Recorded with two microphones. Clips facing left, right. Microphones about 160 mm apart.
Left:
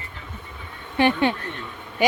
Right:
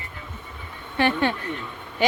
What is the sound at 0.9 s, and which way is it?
Speech, 15° left (ahead or behind).